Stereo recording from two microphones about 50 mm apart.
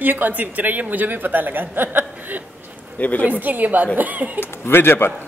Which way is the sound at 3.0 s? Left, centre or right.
Left.